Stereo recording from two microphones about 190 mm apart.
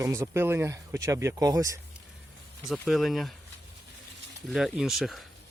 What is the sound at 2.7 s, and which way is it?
Speech, centre (ahead or behind).